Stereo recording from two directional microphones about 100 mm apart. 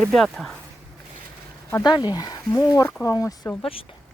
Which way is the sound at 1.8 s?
45° left (ahead or behind).